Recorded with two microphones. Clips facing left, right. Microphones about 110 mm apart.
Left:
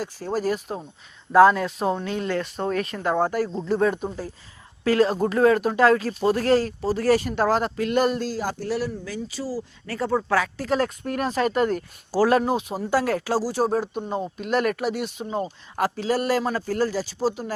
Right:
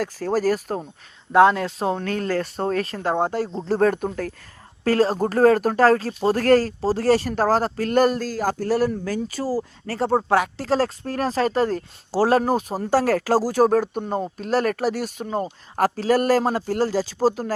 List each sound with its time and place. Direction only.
0.0 s speech: 45° right (ahead or behind)
1.3 s speech: 25° right (ahead or behind)
2.0 s speech: 50° right (ahead or behind); by 3.7 s 25° right (ahead or behind)
3.7 s speech: 50° right (ahead or behind)
4.8 s speech: 35° right (ahead or behind)
6.4 s speech: 45° right (ahead or behind)
12.4 s speech: 45° right (ahead or behind)
16.6 s speech: 30° right (ahead or behind)
17.0 s speech: 40° right (ahead or behind)